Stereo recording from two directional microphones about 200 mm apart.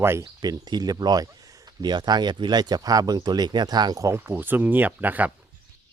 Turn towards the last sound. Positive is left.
turn(degrees=-10)  # may be behind; listen again after turning